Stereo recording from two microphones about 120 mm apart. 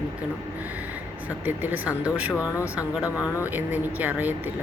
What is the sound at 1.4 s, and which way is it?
Speech, 15° right (ahead or behind).